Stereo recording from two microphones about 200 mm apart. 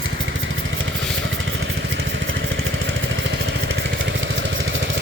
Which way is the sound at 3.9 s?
70° right (ahead or behind).